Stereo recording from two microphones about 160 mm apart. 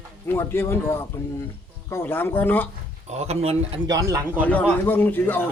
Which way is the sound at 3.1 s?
40° right (ahead or behind).